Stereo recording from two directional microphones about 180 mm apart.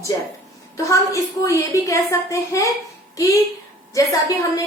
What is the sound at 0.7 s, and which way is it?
A woman's voice, 15° left (ahead or behind).